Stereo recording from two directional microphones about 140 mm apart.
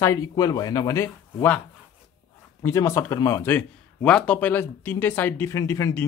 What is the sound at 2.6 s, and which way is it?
Speech, 20° left (ahead or behind).